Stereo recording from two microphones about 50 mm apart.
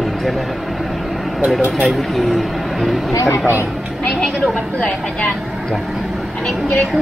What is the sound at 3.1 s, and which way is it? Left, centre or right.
Speech, left.